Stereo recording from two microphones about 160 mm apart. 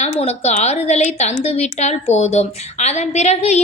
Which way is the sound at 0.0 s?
45° left (ahead or behind).